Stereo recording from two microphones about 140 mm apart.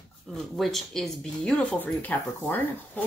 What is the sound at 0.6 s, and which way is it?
Speech, centre (ahead or behind).